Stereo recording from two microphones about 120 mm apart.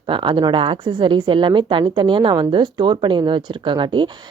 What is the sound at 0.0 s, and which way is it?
A woman's voice, 45° right (ahead or behind).